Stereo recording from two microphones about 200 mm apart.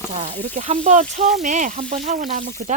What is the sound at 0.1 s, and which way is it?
Speech, 40° right (ahead or behind).